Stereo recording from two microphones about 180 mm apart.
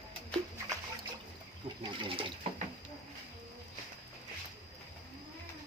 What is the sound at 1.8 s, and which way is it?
Speech, 25° right (ahead or behind).